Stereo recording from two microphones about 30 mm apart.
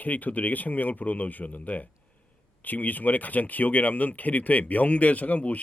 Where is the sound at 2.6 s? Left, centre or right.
Left.